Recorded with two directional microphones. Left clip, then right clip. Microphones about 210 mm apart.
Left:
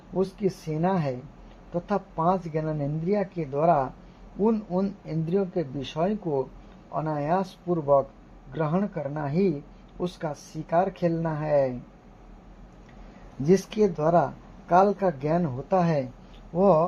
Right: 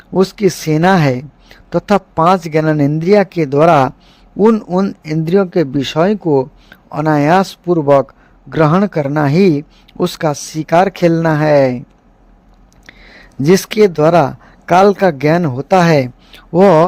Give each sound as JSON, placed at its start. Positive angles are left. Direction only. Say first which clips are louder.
{"t": 0.1, "sound": "speech", "louder": "right 14 dB", "side_deg": -55}
{"t": 13.4, "sound": "speech", "louder": "right 12 dB", "side_deg": -45}
{"t": 16.6, "sound": "speech", "louder": "right 12 dB", "side_deg": -60}